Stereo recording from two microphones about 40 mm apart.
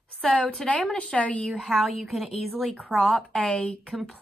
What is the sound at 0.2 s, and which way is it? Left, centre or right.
Speech, left.